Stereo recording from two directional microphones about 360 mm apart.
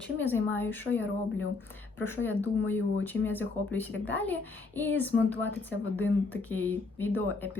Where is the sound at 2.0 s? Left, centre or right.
Centre.